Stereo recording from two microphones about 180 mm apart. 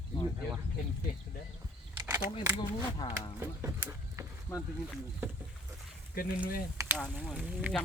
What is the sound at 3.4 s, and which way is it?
Speech, 15° right (ahead or behind).